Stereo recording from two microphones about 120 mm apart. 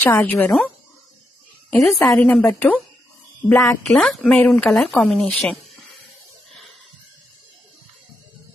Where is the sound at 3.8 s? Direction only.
5° left (ahead or behind).